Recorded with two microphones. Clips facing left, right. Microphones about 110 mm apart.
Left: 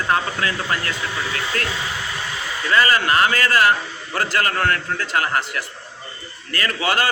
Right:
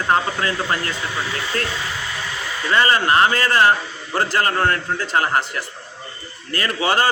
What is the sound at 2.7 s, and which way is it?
A man's voice, 25° right (ahead or behind).